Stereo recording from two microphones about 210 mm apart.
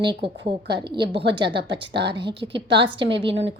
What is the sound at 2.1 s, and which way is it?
A woman's voice, 25° right (ahead or behind).